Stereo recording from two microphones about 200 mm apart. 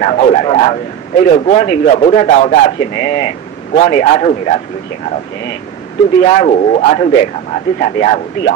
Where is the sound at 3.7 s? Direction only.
35° left (ahead or behind).